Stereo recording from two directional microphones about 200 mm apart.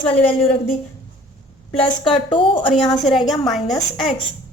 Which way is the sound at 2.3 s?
25° left (ahead or behind).